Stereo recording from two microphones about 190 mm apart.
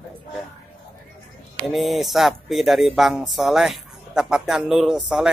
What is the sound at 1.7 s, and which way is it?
Speech, centre (ahead or behind).